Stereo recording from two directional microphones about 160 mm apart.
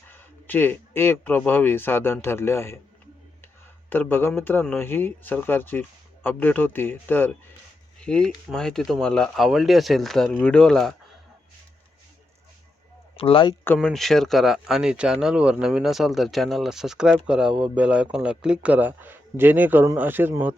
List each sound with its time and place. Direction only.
0.1 s speech: 10° left (ahead or behind)
3.8 s speech: 10° left (ahead or behind)
13.1 s speech: 35° left (ahead or behind)
13.7 s speech: centre (ahead or behind)